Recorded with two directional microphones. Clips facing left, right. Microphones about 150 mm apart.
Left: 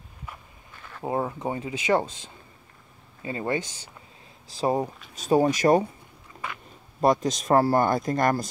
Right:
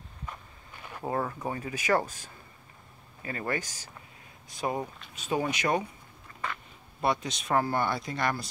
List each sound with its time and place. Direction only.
1.0 s speech: 20° left (ahead or behind); by 5.9 s 40° left (ahead or behind)
7.0 s speech: 40° left (ahead or behind)